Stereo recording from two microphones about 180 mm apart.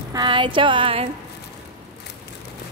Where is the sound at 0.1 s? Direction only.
25° right (ahead or behind).